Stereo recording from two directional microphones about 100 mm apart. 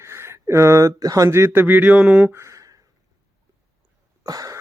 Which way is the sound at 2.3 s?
30° right (ahead or behind).